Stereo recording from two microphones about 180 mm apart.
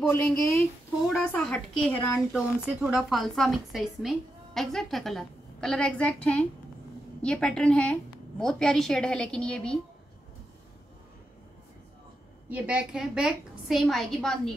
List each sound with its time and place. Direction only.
0.0 s a woman's voice: 10° left (ahead or behind)
2.3 s a woman's voice: centre (ahead or behind)
12.4 s a woman's voice: 10° right (ahead or behind)